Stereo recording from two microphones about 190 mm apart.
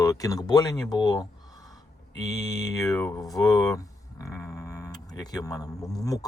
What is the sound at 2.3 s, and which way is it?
Speech, 20° left (ahead or behind).